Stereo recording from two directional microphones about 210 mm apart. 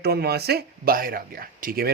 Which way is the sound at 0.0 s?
50° right (ahead or behind).